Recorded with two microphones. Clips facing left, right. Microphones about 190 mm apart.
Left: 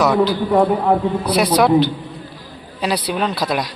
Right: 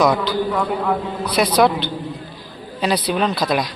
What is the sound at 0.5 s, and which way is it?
Speech, 30° left (ahead or behind).